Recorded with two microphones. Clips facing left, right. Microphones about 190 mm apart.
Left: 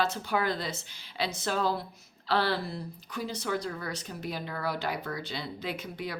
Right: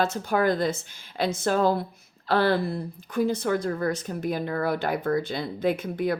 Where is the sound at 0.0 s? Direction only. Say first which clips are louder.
Right 6 dB; 45° right (ahead or behind).